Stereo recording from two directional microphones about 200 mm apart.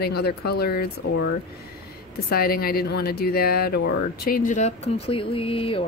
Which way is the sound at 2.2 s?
50° left (ahead or behind).